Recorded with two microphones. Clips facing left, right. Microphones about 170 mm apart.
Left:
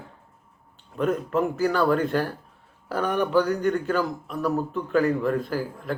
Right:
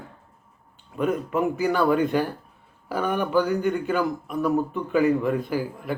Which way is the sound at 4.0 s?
15° right (ahead or behind).